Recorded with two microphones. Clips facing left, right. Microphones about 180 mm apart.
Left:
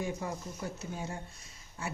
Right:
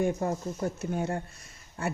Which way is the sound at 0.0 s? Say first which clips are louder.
Right 8 dB; 50° right (ahead or behind).